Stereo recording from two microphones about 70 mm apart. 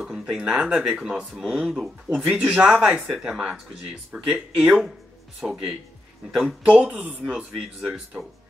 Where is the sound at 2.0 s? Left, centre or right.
Centre.